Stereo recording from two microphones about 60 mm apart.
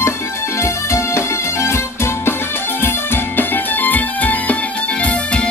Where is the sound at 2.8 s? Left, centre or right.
Left.